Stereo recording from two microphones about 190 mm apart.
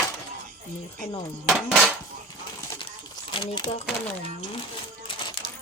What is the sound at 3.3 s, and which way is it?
Speech, 25° left (ahead or behind).